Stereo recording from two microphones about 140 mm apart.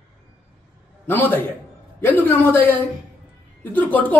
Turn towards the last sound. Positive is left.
turn(degrees=10)  # may be behind; listen again after turning